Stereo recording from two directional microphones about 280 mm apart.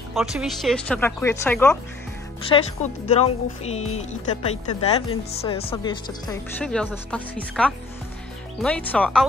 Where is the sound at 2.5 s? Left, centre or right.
Left.